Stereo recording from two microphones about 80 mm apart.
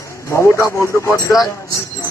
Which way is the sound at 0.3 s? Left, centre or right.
Left.